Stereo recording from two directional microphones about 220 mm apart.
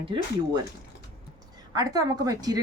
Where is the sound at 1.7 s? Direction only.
15° right (ahead or behind).